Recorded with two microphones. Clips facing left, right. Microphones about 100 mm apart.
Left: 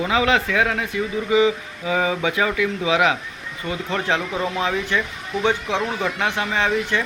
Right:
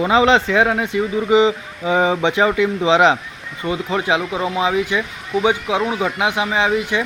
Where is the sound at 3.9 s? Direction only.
10° right (ahead or behind).